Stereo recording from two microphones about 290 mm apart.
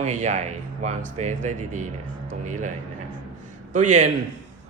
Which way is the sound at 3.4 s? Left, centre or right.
Right.